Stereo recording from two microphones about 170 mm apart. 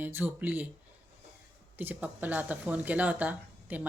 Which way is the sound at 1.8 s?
10° right (ahead or behind).